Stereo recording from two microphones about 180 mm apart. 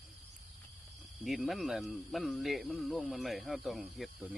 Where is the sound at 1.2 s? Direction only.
Centre (ahead or behind).